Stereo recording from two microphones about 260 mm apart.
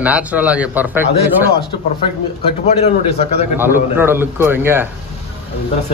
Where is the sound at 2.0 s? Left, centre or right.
Left.